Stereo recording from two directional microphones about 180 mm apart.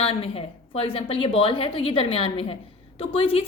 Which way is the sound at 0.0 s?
30° left (ahead or behind).